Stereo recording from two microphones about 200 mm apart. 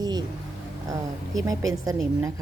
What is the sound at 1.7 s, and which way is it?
Speech, 15° right (ahead or behind).